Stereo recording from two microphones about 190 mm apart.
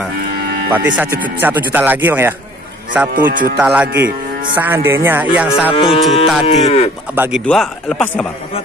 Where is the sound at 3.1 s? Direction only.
45° right (ahead or behind).